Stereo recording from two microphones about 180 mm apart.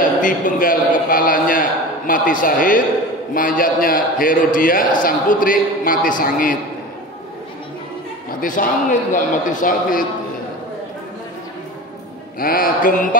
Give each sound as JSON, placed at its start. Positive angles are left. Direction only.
{"t": 0.2, "sound": "a man's voice", "side_deg": 50}
{"t": 8.3, "sound": "a man's voice", "side_deg": 50}
{"t": 12.4, "sound": "a man's voice", "side_deg": 55}